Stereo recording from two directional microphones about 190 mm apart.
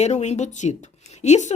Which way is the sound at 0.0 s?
35° left (ahead or behind).